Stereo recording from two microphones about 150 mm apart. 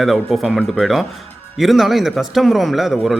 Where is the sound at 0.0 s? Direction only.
Centre (ahead or behind).